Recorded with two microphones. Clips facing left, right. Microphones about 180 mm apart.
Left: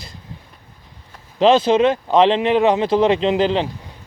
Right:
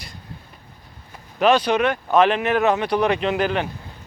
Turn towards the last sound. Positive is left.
turn(degrees=25)  # may be behind; listen again after turning